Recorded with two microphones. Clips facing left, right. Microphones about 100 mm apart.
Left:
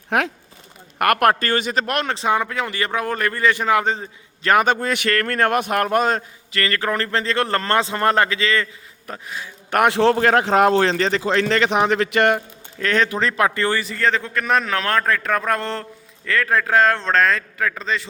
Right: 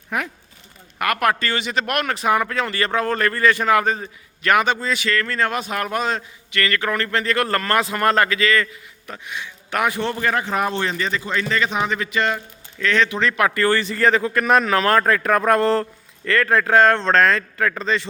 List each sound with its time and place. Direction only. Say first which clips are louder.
0.1 s speech: left 5 dB; 90° left
0.9 s a man's voice: left 4 dB; 55° left (ahead or behind)
1.9 s speech: right 2 dB; 30° left (ahead or behind)
4.4 s a man's voice: left 1 dB; 40° left (ahead or behind)
6.5 s speech: even; 35° left (ahead or behind)
9.2 s speech: right 2 dB; 35° left (ahead or behind)
9.6 s a man's voice: left 5 dB; 50° left (ahead or behind)
9.9 s a man's voice: left 7 dB; 90° left; by 12.4 s 65° left (ahead or behind)
12.8 s speech: even; 40° left (ahead or behind); by 13.7 s 25° left (ahead or behind)
13.7 s speech: right 3 dB; centre (ahead or behind)